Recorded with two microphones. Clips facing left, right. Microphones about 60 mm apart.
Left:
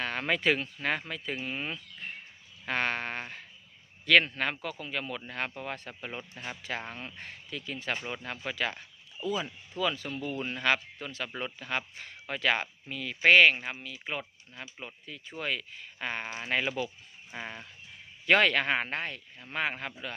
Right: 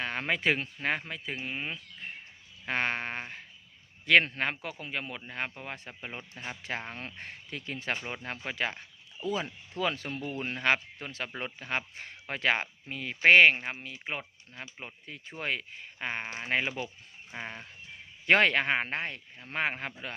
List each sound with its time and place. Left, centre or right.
0.0 s speech: right
2.6 s speech: right